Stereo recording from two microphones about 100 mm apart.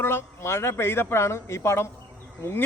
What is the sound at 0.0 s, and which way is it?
Speech, 25° left (ahead or behind).